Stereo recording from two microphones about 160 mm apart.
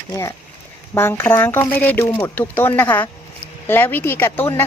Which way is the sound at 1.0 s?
15° left (ahead or behind).